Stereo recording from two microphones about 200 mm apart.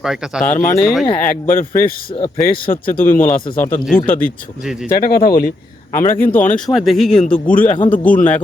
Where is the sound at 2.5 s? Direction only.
45° left (ahead or behind).